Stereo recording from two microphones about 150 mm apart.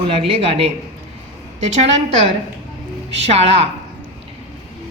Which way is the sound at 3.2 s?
45° right (ahead or behind).